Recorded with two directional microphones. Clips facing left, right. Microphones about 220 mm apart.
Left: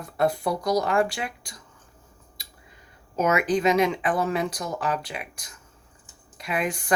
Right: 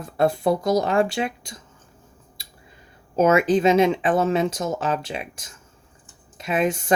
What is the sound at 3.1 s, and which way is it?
Speech, 30° right (ahead or behind).